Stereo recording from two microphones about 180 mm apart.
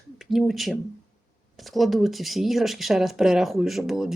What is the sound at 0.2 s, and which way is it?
Speech, centre (ahead or behind).